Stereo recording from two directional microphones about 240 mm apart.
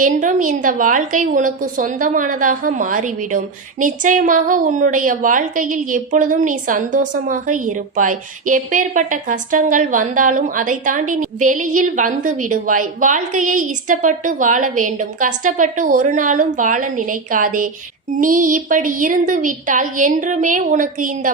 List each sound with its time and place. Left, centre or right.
0.0 s a woman's voice: right